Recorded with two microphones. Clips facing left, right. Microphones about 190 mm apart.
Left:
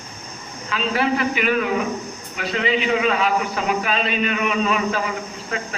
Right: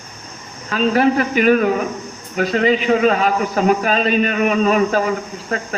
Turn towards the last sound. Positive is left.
turn(degrees=-45)  # may be behind; listen again after turning